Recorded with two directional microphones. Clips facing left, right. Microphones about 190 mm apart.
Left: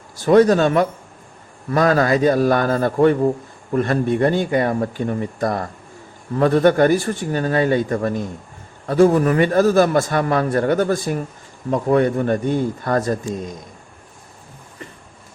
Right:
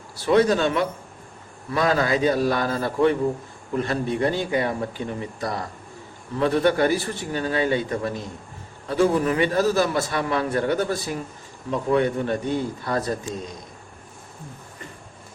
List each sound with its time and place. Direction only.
0.3 s a man's voice: 45° left (ahead or behind)